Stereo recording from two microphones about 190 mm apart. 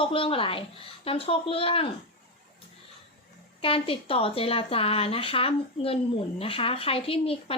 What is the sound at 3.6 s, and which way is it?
Speech, 30° left (ahead or behind).